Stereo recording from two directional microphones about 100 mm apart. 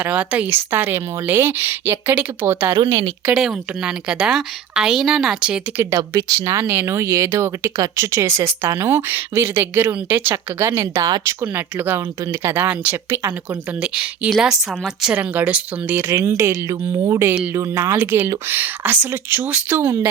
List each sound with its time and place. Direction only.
0.0 s speech: 15° right (ahead or behind)
3.3 s a woman's voice: centre (ahead or behind)
6.0 s speech: 35° right (ahead or behind)
6.6 s speech: 20° right (ahead or behind)
11.0 s speech: 40° right (ahead or behind)
11.3 s a woman's voice: 20° right (ahead or behind)
16.1 s speech: 30° right (ahead or behind)
17.9 s a woman's voice: 20° right (ahead or behind)